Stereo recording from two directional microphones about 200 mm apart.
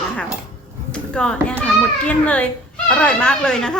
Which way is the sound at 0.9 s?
5° left (ahead or behind).